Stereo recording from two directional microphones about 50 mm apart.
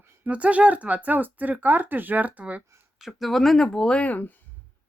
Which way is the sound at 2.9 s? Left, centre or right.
Centre.